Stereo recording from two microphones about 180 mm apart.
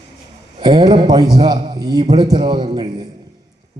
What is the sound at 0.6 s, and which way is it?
A man's voice, 25° right (ahead or behind).